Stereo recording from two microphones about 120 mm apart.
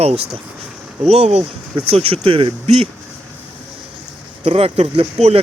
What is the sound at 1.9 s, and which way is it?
Speech, 50° right (ahead or behind).